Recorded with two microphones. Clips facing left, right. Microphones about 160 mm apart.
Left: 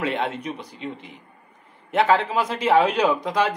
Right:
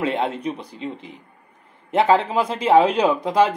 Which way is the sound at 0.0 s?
30° right (ahead or behind).